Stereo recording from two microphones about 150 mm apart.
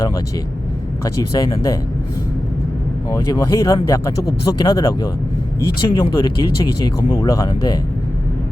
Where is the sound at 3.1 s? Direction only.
20° left (ahead or behind).